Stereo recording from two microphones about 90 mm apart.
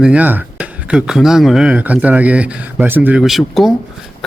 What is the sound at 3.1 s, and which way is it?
Speech, centre (ahead or behind).